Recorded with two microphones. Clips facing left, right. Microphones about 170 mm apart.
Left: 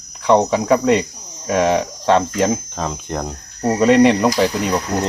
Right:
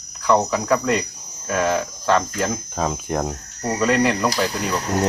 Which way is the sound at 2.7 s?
5° right (ahead or behind).